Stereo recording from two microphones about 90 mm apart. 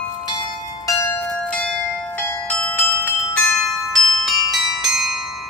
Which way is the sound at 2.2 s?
10° left (ahead or behind).